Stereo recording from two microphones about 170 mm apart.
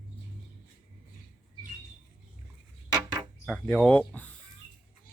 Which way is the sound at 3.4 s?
5° left (ahead or behind).